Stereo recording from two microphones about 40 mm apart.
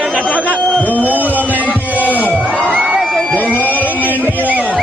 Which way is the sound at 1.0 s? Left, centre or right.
Right.